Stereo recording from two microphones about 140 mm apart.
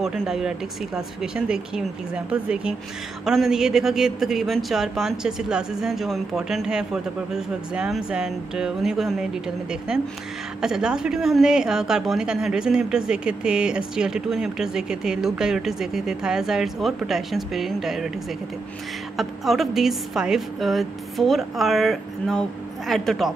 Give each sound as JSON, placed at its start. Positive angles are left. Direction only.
{"t": 0.0, "sound": "a woman's voice", "side_deg": 0}
{"t": 19.1, "sound": "a woman's voice", "side_deg": 0}